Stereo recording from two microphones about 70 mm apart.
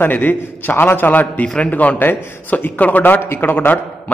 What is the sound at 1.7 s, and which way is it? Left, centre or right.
A man's voice, left.